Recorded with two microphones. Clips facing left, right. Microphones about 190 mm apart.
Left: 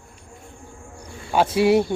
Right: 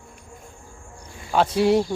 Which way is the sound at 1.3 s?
5° left (ahead or behind).